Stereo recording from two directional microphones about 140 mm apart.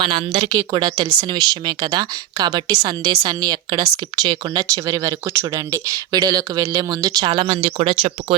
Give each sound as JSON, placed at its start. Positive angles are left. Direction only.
{"t": 0.0, "sound": "speech", "side_deg": -35}